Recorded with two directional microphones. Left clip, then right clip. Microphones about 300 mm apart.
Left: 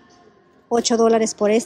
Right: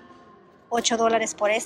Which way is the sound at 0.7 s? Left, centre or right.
Centre.